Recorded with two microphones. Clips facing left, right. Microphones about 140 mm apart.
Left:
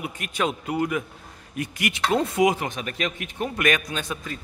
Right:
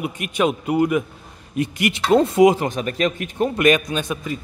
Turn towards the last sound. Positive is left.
turn(degrees=-15)  # may be behind; listen again after turning